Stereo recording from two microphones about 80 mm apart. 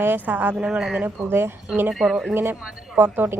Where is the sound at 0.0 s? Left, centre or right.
Right.